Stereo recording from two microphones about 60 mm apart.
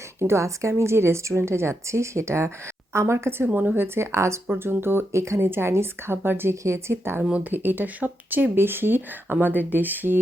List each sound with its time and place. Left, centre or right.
0.2 s speech: right
3.9 s speech: right
4.4 s speech: right
5.5 s speech: right
6.6 s speech: right